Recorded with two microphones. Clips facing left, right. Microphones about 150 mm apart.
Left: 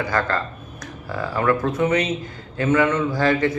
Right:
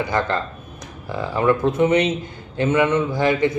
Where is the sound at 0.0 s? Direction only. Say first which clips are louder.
Right 1 dB; 20° right (ahead or behind).